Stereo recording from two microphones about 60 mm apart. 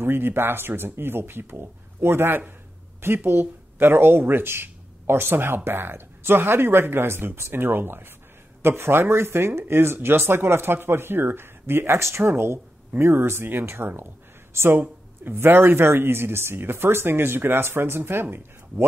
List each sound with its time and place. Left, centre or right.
0.0 s speech: right